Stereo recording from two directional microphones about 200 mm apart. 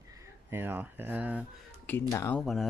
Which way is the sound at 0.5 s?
10° right (ahead or behind).